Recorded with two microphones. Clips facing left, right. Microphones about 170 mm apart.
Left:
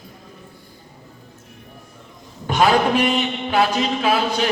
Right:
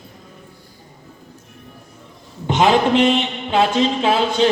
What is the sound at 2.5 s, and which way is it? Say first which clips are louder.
A man's voice: right 2 dB; 20° right (ahead or behind).